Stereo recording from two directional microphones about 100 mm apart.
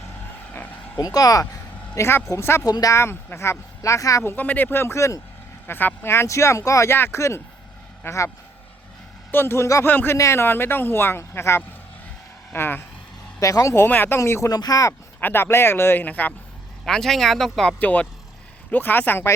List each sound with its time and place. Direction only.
0.9 s speech: 40° left (ahead or behind)
2.0 s speech: 25° left (ahead or behind)
2.6 s speech: 40° left (ahead or behind)
9.3 s speech: 25° left (ahead or behind)
13.4 s speech: 30° left (ahead or behind)
13.8 s speech: 20° left (ahead or behind)
14.5 s speech: 40° left (ahead or behind)
15.2 s speech: 20° left (ahead or behind)
16.8 s speech: 5° left (ahead or behind)
17.7 s speech: 15° left (ahead or behind)